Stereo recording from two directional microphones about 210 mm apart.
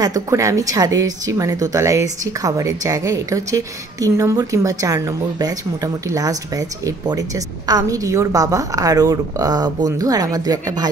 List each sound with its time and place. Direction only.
0.0 s speech: 15° right (ahead or behind)